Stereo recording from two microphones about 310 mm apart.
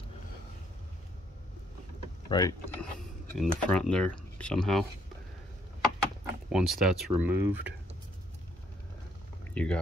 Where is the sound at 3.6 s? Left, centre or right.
Centre.